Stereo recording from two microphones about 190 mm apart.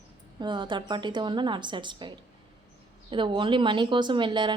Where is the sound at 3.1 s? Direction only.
25° right (ahead or behind).